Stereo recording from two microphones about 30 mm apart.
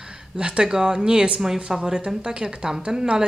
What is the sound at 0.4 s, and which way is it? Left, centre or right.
A woman's voice, right.